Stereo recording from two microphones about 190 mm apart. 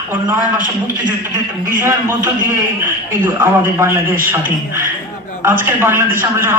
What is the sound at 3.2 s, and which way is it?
Speech, 10° right (ahead or behind).